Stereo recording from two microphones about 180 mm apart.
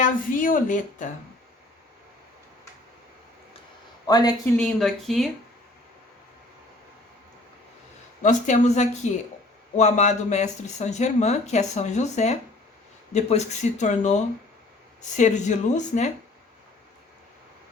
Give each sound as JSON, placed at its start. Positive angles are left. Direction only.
{"t": 0.0, "sound": "a woman's voice", "side_deg": 50}
{"t": 4.0, "sound": "speech", "side_deg": 20}
{"t": 4.5, "sound": "speech", "side_deg": 0}
{"t": 8.2, "sound": "speech", "side_deg": 45}